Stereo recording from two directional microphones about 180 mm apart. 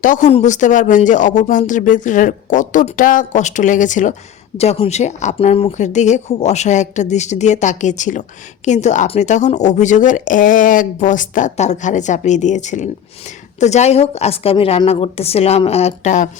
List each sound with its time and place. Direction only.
0.0 s a woman's voice: 45° left (ahead or behind)